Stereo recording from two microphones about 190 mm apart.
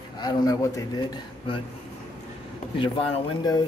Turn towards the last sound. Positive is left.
turn(degrees=25)  # may be behind; listen again after turning